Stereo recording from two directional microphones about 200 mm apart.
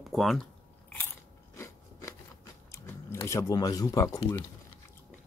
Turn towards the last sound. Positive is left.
turn(degrees=15)  # may be behind; listen again after turning